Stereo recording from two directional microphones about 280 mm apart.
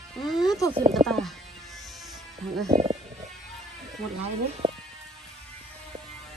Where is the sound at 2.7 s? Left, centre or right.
Right.